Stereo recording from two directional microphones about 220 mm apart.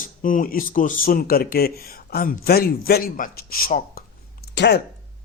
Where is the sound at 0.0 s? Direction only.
35° left (ahead or behind).